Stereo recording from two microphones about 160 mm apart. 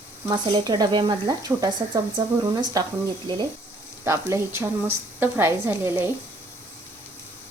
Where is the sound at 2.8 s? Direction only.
25° right (ahead or behind).